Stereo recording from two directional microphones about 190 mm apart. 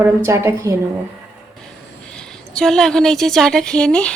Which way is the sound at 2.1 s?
5° left (ahead or behind).